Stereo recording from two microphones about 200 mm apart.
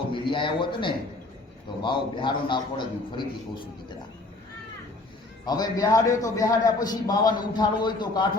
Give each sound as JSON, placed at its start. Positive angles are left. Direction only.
{"t": 0.1, "sound": "a man's voice", "side_deg": 25}
{"t": 5.5, "sound": "a man's voice", "side_deg": 20}